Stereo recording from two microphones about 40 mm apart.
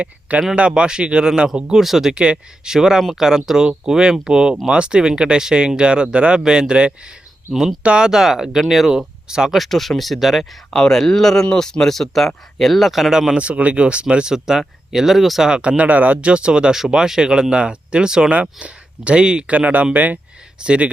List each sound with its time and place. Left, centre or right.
0.0 s speech: right; by 2.1 s centre
2.1 s speech: right
2.6 s speech: centre
8.0 s speech: centre
8.9 s speech: centre
9.6 s speech: centre
10.7 s speech: centre
13.1 s speech: centre
13.3 s speech: right
14.3 s speech: centre
15.4 s speech: right
16.3 s speech: right
19.5 s speech: right
20.6 s speech: right